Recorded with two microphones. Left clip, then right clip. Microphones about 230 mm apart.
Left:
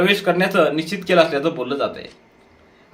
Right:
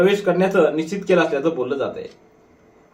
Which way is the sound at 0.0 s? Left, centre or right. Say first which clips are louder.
Even; left.